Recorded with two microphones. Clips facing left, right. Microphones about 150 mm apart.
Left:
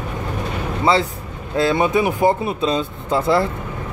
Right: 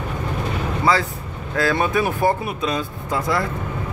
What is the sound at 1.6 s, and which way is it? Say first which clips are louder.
Speech: left 3 dB; 20° left (ahead or behind).